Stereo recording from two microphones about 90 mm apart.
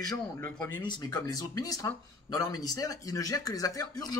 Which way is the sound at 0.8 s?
50° left (ahead or behind).